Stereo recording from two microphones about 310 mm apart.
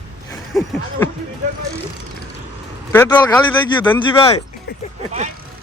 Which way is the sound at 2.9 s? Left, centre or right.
Centre.